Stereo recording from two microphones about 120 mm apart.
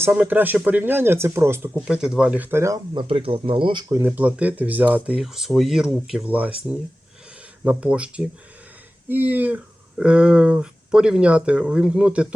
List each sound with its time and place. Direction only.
0.0 s speech: 15° right (ahead or behind)
1.8 s speech: 5° right (ahead or behind); by 2.8 s 25° right (ahead or behind)
2.9 s speech: 45° right (ahead or behind)
3.8 s speech: 20° right (ahead or behind)
5.2 s speech: centre (ahead or behind)